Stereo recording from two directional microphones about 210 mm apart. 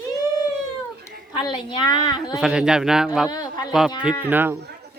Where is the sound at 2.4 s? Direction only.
5° right (ahead or behind).